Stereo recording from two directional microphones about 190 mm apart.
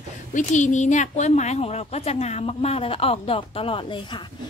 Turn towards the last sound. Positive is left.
turn(degrees=25)  # may be behind; listen again after turning